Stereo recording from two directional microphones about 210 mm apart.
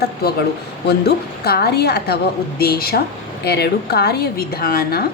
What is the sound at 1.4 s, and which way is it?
A woman's voice, 50° left (ahead or behind).